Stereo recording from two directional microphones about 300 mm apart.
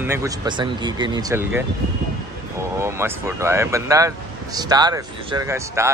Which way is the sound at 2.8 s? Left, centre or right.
Centre.